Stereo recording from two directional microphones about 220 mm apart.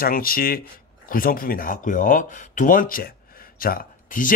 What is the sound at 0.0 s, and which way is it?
Speech, 40° left (ahead or behind).